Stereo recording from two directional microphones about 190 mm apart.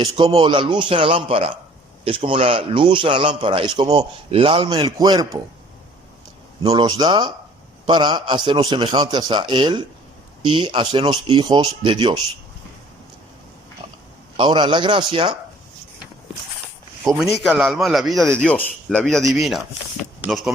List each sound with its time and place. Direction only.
0.0 s a man's voice: 30° right (ahead or behind)
6.7 s a man's voice: 20° right (ahead or behind)
14.3 s a man's voice: 25° right (ahead or behind)
17.0 s a man's voice: centre (ahead or behind)